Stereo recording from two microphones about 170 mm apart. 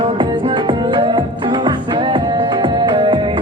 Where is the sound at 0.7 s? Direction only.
30° right (ahead or behind).